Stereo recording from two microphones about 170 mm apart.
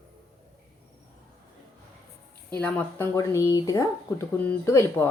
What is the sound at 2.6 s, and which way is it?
Speech, 10° left (ahead or behind).